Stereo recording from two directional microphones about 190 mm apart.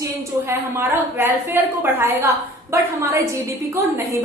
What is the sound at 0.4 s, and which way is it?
A woman's voice, 10° right (ahead or behind).